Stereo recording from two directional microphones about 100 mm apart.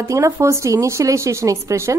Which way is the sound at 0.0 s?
30° right (ahead or behind).